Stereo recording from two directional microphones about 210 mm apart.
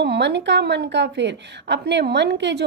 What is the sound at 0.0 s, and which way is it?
A woman's voice, 55° right (ahead or behind).